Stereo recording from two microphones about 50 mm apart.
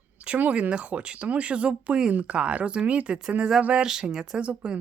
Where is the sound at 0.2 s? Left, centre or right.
Right.